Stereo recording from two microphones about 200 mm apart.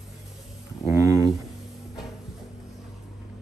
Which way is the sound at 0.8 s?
15° right (ahead or behind).